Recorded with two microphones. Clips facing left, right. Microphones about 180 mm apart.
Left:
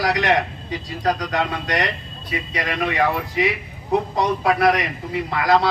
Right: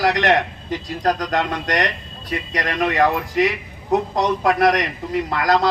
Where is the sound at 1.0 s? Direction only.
45° right (ahead or behind).